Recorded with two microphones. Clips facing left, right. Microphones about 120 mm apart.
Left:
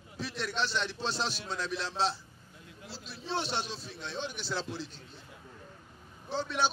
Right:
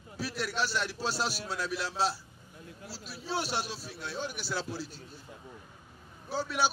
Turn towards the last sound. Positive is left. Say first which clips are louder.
# right 1 dB
turn(degrees=-5)  # may be behind; listen again after turning